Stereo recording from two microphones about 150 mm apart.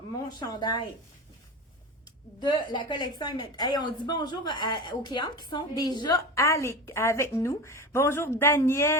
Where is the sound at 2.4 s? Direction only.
30° left (ahead or behind).